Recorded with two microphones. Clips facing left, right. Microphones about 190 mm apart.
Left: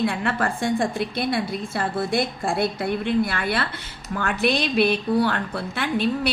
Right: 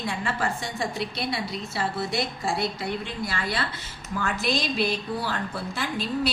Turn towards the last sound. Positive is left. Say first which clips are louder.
# left 5 dB
turn(degrees=60)  # may be behind; listen again after turning